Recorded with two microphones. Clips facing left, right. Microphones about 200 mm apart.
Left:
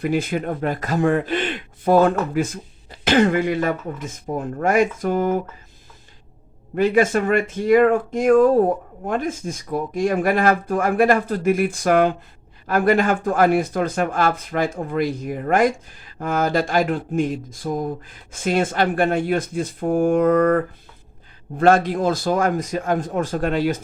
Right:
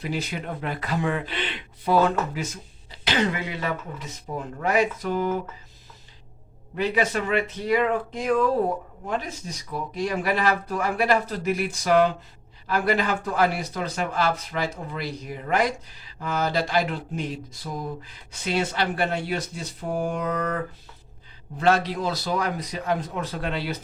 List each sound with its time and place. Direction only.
0.0 s speech: 50° left (ahead or behind)
6.7 s speech: 50° left (ahead or behind)